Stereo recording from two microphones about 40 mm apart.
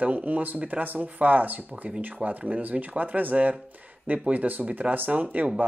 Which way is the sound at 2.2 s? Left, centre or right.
Right.